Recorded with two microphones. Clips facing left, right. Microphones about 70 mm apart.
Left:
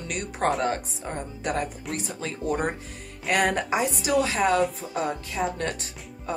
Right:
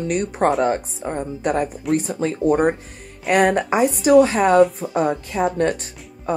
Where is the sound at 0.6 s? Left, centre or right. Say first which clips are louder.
Right 7 dB; centre.